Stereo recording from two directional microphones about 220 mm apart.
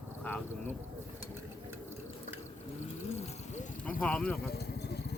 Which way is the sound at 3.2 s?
30° left (ahead or behind).